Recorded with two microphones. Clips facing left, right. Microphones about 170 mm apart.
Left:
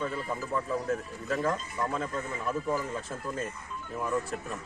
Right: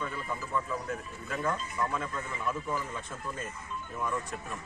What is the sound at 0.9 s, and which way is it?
Speech, 40° left (ahead or behind).